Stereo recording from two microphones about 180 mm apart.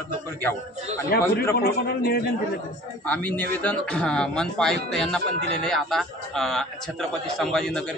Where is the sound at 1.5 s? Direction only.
60° left (ahead or behind).